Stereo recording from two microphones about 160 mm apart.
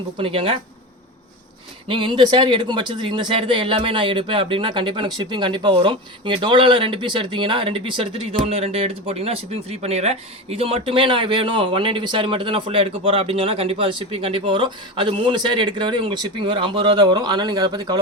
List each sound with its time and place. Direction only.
0.2 s speech: 35° right (ahead or behind)
1.9 s speech: 30° right (ahead or behind)